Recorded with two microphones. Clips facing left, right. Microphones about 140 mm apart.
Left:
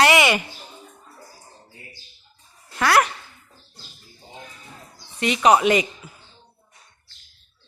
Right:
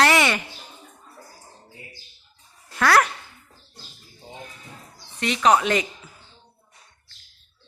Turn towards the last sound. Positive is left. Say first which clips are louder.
# left 3 dB
turn(degrees=10)  # may be behind; listen again after turning